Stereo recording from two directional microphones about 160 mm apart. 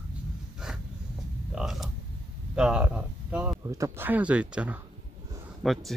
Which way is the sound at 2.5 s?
5° right (ahead or behind).